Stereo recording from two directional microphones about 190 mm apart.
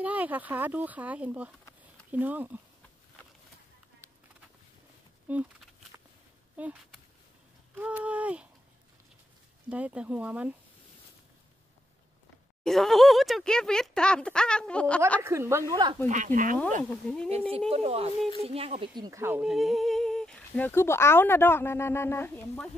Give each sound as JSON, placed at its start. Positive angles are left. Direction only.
{"t": 0.0, "sound": "speech", "side_deg": -10}
{"t": 5.3, "sound": "speech", "side_deg": -10}
{"t": 5.9, "sound": "a sound", "side_deg": -10}
{"t": 6.5, "sound": "speech", "side_deg": -10}
{"t": 9.7, "sound": "speech", "side_deg": -5}
{"t": 12.6, "sound": "speech", "side_deg": 0}
{"t": 15.2, "sound": "speech", "side_deg": -15}
{"t": 15.7, "sound": "speech", "side_deg": -25}
{"t": 16.1, "sound": "a woman's voice", "side_deg": -40}
{"t": 17.0, "sound": "speech", "side_deg": 5}
{"t": 17.5, "sound": "a woman's voice", "side_deg": -30}